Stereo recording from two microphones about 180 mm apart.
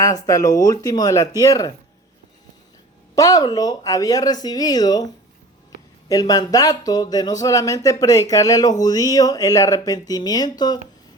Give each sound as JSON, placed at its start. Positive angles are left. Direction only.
{"t": 0.0, "sound": "speech", "side_deg": 20}
{"t": 3.2, "sound": "speech", "side_deg": 20}
{"t": 6.1, "sound": "speech", "side_deg": 20}